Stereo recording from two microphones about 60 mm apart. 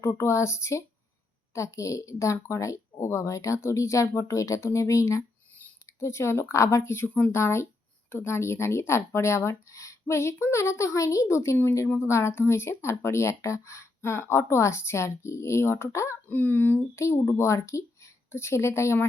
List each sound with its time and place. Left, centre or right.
0.0 s speech: left
16.3 s speech: left
16.9 s a woman's voice: left